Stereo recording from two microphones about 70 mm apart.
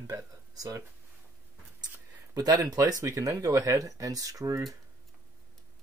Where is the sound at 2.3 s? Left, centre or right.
Right.